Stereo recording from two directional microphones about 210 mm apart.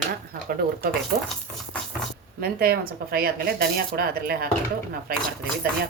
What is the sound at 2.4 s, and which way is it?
Speech, 45° right (ahead or behind).